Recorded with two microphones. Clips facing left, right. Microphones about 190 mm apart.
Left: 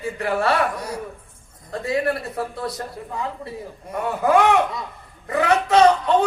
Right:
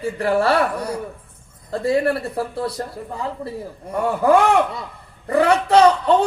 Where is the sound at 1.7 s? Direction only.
35° right (ahead or behind).